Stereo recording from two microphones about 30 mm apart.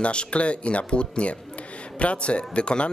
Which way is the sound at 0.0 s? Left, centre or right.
Left.